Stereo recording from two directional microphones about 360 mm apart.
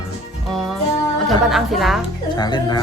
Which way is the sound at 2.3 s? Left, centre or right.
Centre.